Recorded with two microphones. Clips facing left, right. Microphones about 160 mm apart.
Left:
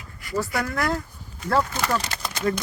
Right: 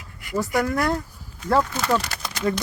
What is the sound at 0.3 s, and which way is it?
Speech, 15° right (ahead or behind).